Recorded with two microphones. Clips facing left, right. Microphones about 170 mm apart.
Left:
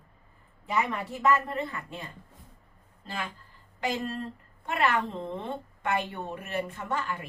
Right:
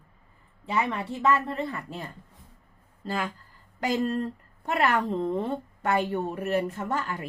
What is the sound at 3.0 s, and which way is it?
A woman's voice, 45° right (ahead or behind).